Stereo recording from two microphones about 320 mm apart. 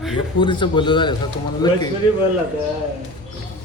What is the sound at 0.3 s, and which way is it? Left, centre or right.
Speech, centre.